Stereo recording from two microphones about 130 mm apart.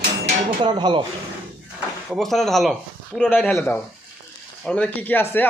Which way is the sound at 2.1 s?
Centre (ahead or behind).